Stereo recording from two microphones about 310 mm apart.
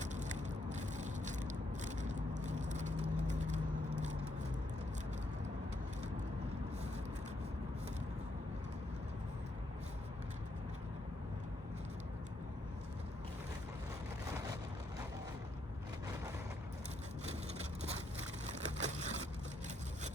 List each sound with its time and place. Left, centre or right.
0.0 s a sound: right
1.8 s vehicle: right
18.4 s crushing: right